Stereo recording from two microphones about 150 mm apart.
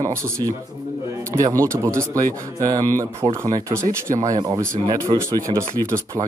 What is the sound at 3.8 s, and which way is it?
Speech, 60° right (ahead or behind).